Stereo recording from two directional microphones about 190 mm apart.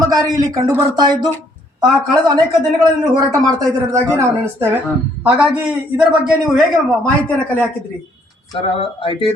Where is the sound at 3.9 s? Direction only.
15° right (ahead or behind).